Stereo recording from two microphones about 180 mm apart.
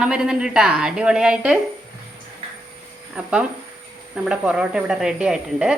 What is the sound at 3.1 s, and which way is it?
Speech, 5° right (ahead or behind).